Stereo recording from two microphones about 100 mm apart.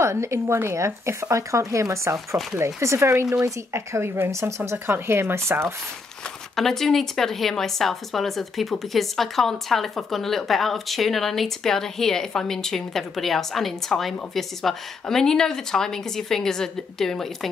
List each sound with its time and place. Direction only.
0.0 s speech: 30° right (ahead or behind)
2.1 s speech: centre (ahead or behind)
2.6 s speech: 30° right (ahead or behind)
6.5 s speech: 5° left (ahead or behind)